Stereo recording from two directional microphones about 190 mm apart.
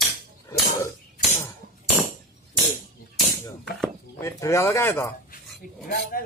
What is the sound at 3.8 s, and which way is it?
Speech, 15° left (ahead or behind).